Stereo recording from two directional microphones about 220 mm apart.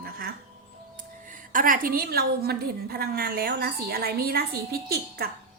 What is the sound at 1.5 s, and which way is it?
A woman's voice, 40° right (ahead or behind).